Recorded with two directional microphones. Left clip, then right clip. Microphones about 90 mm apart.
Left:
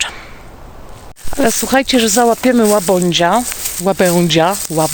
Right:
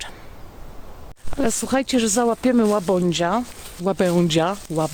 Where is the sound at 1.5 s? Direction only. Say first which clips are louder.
Left 8 dB; 30° right (ahead or behind).